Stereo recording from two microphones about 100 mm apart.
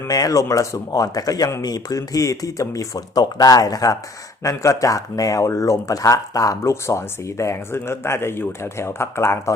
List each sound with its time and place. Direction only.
0.1 s speech: 40° left (ahead or behind)